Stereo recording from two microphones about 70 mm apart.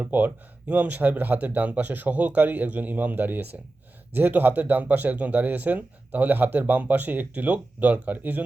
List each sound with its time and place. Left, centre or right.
0.0 s speech: right